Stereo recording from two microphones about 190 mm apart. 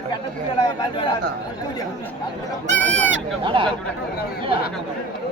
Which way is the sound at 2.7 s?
70° right (ahead or behind).